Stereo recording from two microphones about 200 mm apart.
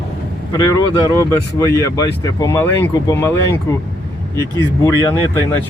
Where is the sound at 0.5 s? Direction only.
20° left (ahead or behind).